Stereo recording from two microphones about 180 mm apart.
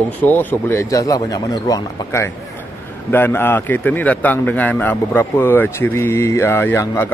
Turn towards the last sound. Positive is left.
turn(degrees=15)  # may be behind; listen again after turning